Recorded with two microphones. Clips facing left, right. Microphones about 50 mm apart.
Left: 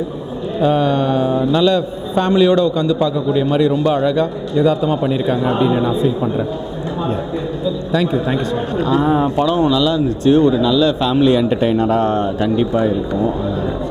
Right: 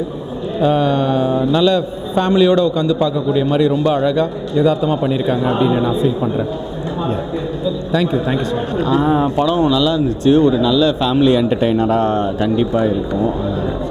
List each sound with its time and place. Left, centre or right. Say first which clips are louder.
0.6 s a man's voice: even; centre
7.9 s a man's voice: even; centre